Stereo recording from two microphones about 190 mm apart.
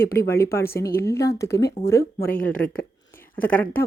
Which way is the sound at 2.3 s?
45° left (ahead or behind).